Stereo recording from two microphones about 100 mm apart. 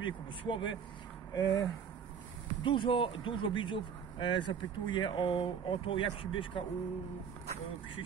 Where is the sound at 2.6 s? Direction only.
55° left (ahead or behind).